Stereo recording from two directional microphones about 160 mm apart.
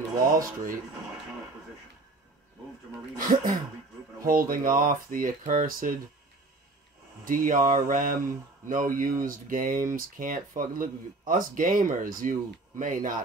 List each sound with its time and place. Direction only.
0.3 s speech: 60° right (ahead or behind)
3.2 s speech: 60° right (ahead or behind)
7.2 s speech: 55° right (ahead or behind)